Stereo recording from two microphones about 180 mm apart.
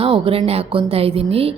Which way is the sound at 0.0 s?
30° right (ahead or behind).